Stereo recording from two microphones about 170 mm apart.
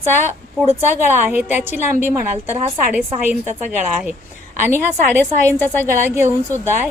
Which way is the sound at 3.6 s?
5° right (ahead or behind).